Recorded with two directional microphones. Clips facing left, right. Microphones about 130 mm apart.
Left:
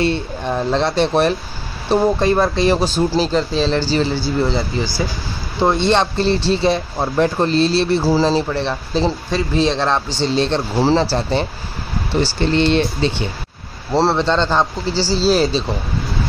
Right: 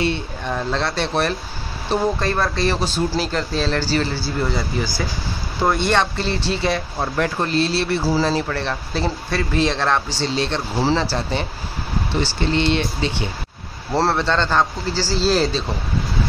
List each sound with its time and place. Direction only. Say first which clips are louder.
0.0 s speech: left 4 dB; 30° left (ahead or behind)
2.1 s speech: left 6 dB; 20° left (ahead or behind)
13.9 s speech: left 3 dB; 25° left (ahead or behind)